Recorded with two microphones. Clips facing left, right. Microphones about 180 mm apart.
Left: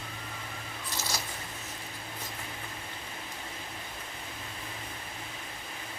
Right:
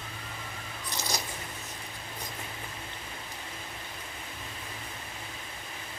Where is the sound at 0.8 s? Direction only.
15° right (ahead or behind).